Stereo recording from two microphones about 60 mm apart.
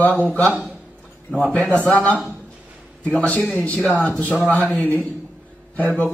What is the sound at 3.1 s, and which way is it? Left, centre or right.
A man's voice, left.